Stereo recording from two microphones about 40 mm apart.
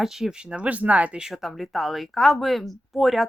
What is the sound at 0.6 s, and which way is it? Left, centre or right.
Speech, right.